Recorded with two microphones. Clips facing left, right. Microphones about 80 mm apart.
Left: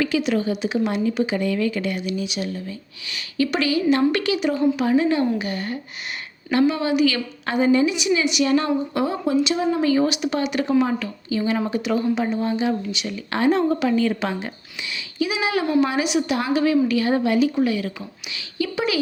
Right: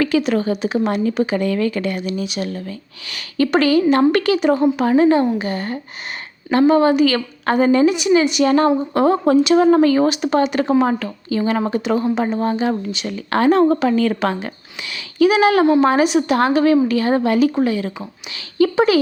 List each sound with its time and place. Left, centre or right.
0.0 s a woman's voice: right
11.8 s a woman's voice: right
12.2 s a woman's voice: right
15.6 s a woman's voice: right